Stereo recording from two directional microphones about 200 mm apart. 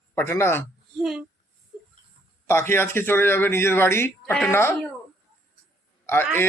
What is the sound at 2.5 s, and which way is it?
A man's voice, 10° left (ahead or behind).